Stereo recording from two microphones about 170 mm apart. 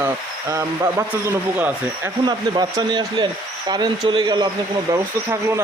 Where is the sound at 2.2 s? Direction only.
25° right (ahead or behind).